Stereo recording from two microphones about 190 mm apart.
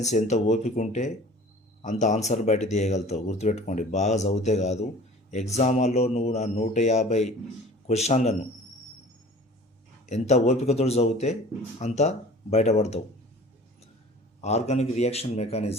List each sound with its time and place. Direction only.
0.0 s speech: 35° left (ahead or behind)
10.1 s speech: 35° left (ahead or behind)
14.4 s speech: 35° left (ahead or behind)